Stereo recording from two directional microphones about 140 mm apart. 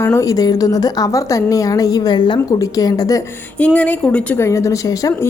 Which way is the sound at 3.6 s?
10° left (ahead or behind).